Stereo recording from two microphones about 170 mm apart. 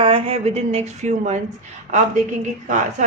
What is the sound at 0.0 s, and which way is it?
A woman's voice, 35° right (ahead or behind).